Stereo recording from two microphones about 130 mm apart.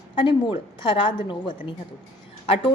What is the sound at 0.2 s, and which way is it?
A woman's voice, 40° left (ahead or behind).